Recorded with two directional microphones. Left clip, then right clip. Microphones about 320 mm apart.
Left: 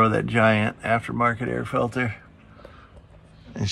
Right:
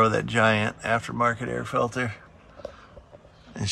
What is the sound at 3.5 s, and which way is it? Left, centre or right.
Speech, centre.